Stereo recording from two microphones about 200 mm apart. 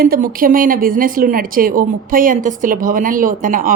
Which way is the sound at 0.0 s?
45° right (ahead or behind).